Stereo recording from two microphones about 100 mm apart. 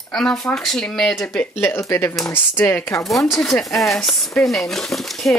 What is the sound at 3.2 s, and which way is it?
Speech, 5° left (ahead or behind).